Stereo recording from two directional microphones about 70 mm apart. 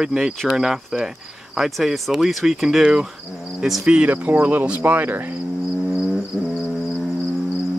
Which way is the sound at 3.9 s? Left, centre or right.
Right.